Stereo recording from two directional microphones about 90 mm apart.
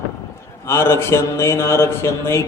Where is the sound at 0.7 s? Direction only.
25° left (ahead or behind).